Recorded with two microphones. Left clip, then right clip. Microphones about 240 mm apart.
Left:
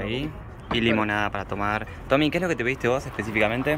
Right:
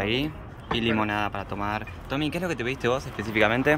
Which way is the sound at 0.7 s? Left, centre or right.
Centre.